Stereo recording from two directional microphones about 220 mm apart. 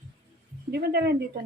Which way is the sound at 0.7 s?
45° right (ahead or behind).